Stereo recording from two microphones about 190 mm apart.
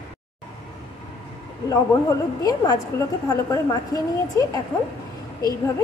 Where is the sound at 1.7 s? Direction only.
20° left (ahead or behind).